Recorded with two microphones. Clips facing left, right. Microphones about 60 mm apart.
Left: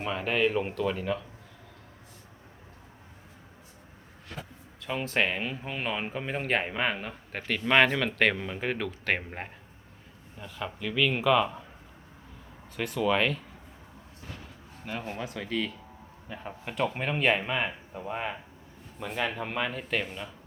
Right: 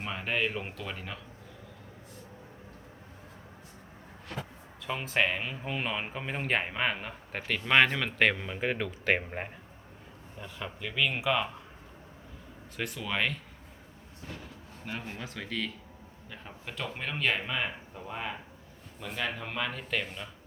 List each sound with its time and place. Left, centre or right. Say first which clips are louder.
0.0 s speech: left 5 dB; centre
4.9 s speech: left 1 dB; centre
12.7 s speech: left 7 dB; centre
15.1 s speech: left 5 dB; centre
16.4 s speech: left 9 dB; left; by 20.3 s centre